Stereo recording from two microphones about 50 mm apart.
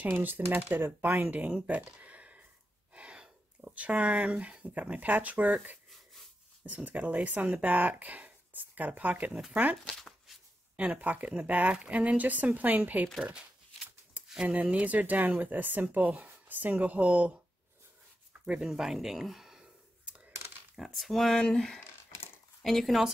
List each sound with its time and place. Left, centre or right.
0.0 s speech: right
1.7 s a sound: right
2.9 s speech: right
9.8 s a sound: centre
10.8 s speech: right
13.2 s speech: right
14.2 s a sound: right
14.5 s speech: right
18.4 s speech: centre
18.7 s speech: centre
20.7 s speech: centre